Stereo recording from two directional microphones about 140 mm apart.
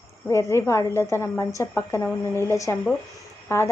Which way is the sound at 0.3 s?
20° left (ahead or behind).